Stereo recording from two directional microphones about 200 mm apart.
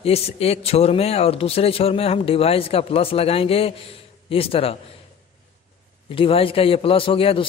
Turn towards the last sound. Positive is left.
turn(degrees=25)  # may be behind; listen again after turning